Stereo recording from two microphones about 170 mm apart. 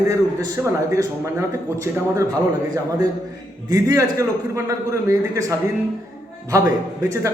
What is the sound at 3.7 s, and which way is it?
A man's voice, 20° right (ahead or behind).